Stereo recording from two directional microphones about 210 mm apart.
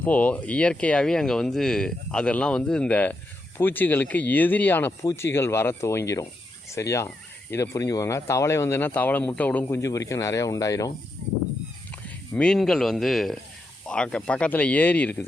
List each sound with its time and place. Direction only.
0.0 s speech: 5° left (ahead or behind)
11.2 s a sound: 35° right (ahead or behind)
11.9 s speech: 5° left (ahead or behind)